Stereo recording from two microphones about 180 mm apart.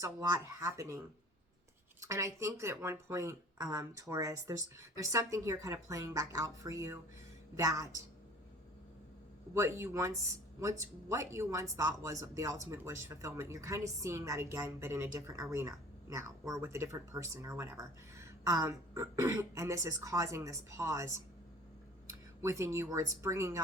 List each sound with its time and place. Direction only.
0.0 s speech: 20° right (ahead or behind)
2.0 s speech: 15° right (ahead or behind)
9.6 s speech: 15° right (ahead or behind)
22.4 s speech: 15° right (ahead or behind)